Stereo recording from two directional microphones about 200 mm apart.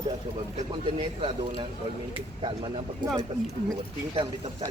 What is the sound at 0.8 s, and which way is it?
Speech, 25° right (ahead or behind).